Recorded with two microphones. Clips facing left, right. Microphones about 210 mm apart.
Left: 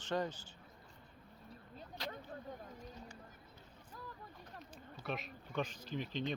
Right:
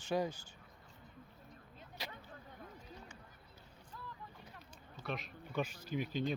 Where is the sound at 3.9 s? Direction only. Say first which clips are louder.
Left 1 dB; 40° left (ahead or behind).